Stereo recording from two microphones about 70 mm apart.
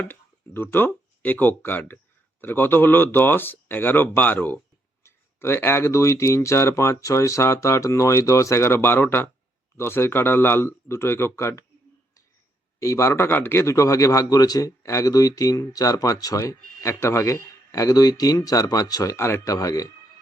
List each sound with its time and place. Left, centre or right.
0.0 s speech: left
12.8 s speech: left
13.7 s speech: left
14.8 s speech: left
16.9 s speech: left
19.1 s speech: left
19.5 s speech: left